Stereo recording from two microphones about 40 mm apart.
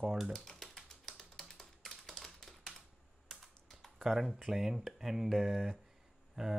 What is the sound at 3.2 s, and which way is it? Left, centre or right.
Computer keyboard, centre.